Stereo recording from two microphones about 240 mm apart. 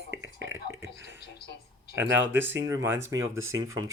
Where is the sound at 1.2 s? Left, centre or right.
Left.